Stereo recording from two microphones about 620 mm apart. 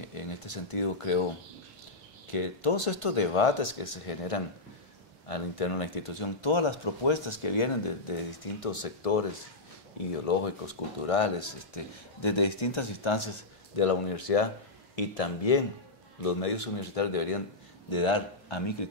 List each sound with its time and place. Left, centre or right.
0.3 s speech: left
2.3 s speech: left
8.5 s speech: left